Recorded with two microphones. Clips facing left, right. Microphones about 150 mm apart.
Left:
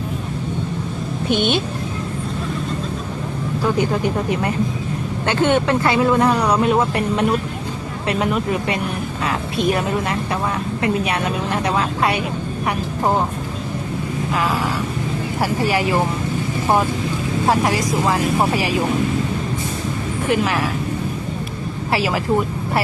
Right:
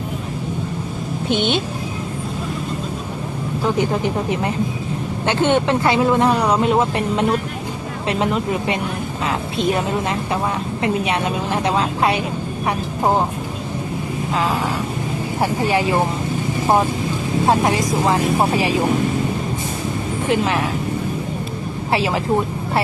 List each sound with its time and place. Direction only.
1.3 s speech: 20° right (ahead or behind)
3.6 s speech: 20° right (ahead or behind)
14.3 s speech: 25° right (ahead or behind)
17.4 s speech: 25° right (ahead or behind)
20.2 s speech: 25° right (ahead or behind)
21.9 s speech: 25° right (ahead or behind)